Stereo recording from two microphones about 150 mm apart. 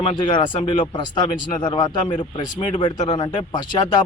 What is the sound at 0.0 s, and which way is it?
Speech, 30° left (ahead or behind).